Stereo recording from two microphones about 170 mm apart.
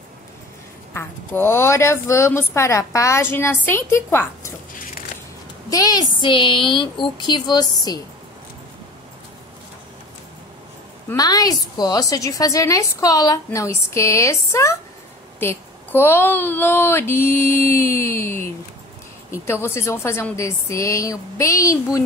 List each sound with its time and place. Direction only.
0.9 s speech: 10° left (ahead or behind)
5.7 s a woman's voice: 20° left (ahead or behind)
11.1 s a woman's voice: 20° left (ahead or behind)